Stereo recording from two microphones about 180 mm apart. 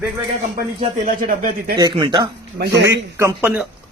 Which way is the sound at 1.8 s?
25° right (ahead or behind).